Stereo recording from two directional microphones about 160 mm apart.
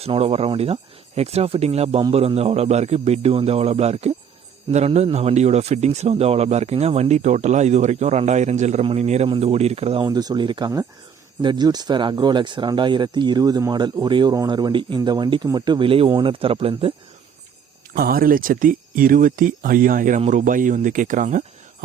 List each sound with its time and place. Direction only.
0.0 s speech: 35° right (ahead or behind)
17.9 s speech: 70° right (ahead or behind); by 21.8 s 55° right (ahead or behind)